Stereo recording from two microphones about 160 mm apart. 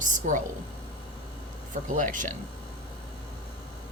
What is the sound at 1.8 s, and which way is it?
Speech, 55° right (ahead or behind).